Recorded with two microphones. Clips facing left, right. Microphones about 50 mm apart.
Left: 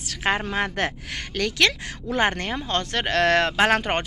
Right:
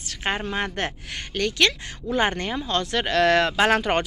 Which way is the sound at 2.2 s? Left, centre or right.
Left.